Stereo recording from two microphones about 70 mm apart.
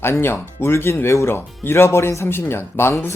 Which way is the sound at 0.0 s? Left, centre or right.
Left.